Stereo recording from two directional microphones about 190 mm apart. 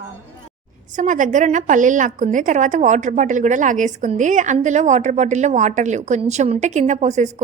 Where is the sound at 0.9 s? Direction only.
40° right (ahead or behind).